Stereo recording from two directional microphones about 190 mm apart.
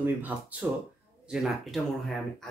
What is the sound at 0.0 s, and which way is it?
Speech, 10° right (ahead or behind).